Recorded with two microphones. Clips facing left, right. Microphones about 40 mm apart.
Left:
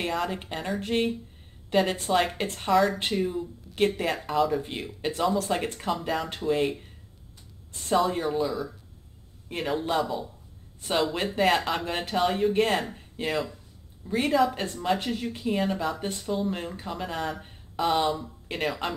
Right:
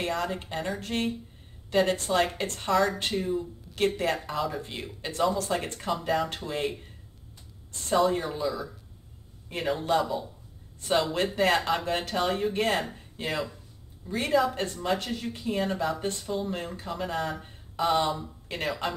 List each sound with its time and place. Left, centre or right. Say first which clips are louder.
0.0 s speech: left 1 dB; centre
7.9 s speech: even; centre